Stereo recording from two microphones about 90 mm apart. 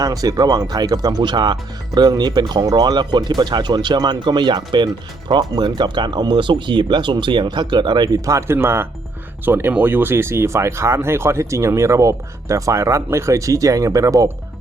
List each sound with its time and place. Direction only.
0.0 s speech: 45° right (ahead or behind)